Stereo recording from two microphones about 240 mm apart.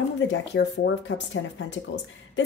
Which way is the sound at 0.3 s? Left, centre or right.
Left.